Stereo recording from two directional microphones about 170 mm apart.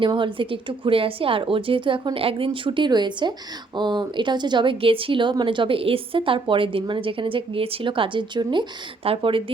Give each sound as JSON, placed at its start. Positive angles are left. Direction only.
{"t": 0.0, "sound": "speech", "side_deg": -30}